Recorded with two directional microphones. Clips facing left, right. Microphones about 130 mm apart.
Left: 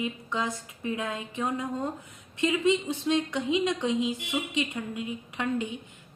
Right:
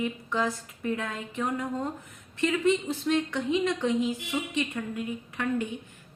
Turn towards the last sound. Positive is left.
turn(degrees=20)  # may be behind; listen again after turning